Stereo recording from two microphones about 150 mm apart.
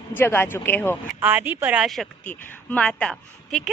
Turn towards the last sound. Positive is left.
turn(degrees=5)  # may be behind; listen again after turning